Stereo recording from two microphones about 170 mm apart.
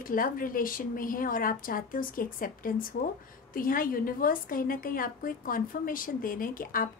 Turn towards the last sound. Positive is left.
turn(degrees=55)  # may be behind; listen again after turning